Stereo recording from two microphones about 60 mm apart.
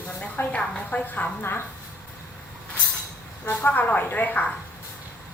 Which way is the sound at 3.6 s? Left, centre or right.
Left.